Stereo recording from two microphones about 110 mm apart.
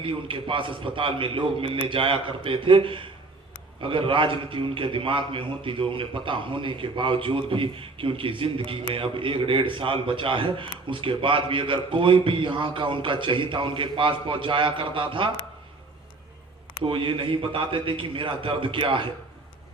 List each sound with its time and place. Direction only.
0.0 s a man's voice: 50° right (ahead or behind)
16.8 s a man's voice: 50° right (ahead or behind)